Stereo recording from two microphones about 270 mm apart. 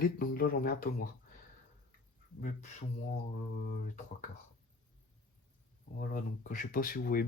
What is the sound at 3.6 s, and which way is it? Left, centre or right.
Speech, left.